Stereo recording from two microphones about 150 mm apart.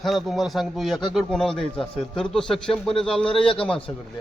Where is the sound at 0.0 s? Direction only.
Centre (ahead or behind).